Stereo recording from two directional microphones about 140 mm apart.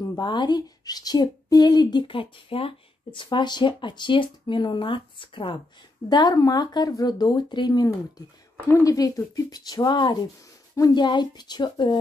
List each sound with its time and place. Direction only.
0.0 s speech: 30° left (ahead or behind)